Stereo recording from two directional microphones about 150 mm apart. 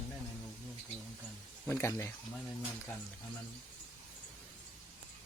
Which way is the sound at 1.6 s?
15° left (ahead or behind).